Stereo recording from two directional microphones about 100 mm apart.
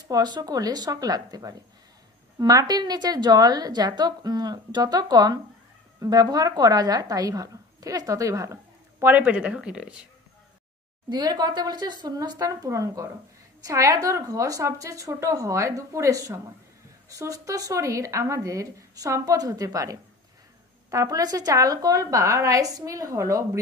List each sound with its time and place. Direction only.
0.1 s a woman's voice: 40° right (ahead or behind)
9.0 s speech: 15° right (ahead or behind)
11.1 s a woman's voice: 45° right (ahead or behind)